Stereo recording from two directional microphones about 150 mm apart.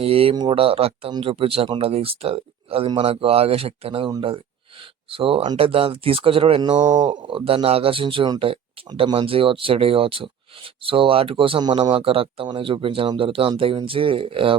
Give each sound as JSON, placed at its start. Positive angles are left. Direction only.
{"t": 0.0, "sound": "speech", "side_deg": -40}
{"t": 5.1, "sound": "speech", "side_deg": -40}